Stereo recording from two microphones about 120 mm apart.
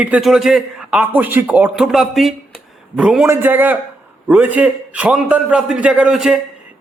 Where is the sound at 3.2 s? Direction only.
20° right (ahead or behind); by 6.4 s 5° right (ahead or behind).